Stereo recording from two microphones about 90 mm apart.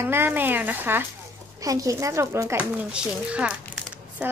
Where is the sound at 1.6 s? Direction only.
40° right (ahead or behind).